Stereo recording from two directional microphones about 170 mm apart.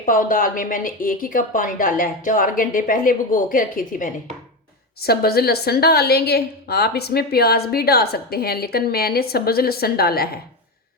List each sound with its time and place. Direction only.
0.0 s speech: 55° left (ahead or behind)
4.9 s a woman's voice: 65° left (ahead or behind)